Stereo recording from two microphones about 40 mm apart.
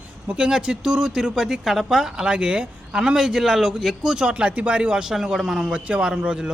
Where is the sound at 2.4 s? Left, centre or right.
Right.